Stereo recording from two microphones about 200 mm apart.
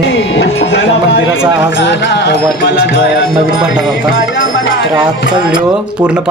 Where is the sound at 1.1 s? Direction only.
75° left (ahead or behind).